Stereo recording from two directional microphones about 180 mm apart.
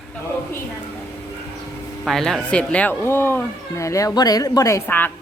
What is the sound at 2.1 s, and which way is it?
Speech, centre (ahead or behind).